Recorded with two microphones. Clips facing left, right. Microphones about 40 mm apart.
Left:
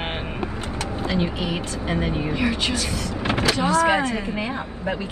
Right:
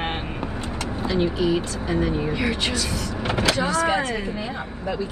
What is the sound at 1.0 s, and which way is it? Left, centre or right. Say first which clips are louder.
Speech: right 4 dB; left.